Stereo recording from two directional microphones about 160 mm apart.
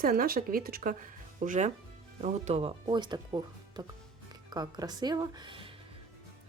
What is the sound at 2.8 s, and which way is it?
A woman's voice, 30° right (ahead or behind).